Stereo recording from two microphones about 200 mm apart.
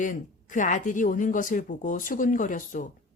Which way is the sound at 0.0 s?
40° left (ahead or behind).